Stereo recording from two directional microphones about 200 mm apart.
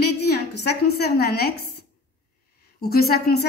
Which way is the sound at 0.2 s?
55° left (ahead or behind).